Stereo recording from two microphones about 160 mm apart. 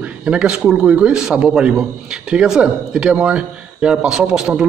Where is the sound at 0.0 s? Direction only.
5° right (ahead or behind).